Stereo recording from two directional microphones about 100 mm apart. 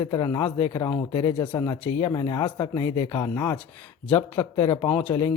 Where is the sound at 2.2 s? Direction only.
45° left (ahead or behind).